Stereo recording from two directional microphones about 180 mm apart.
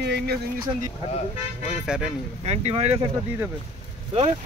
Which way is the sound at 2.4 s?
35° right (ahead or behind).